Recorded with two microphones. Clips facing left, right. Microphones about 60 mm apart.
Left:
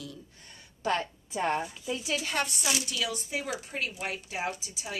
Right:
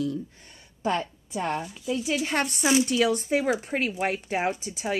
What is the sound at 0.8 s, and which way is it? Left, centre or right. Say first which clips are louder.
Speech: right 3 dB; right.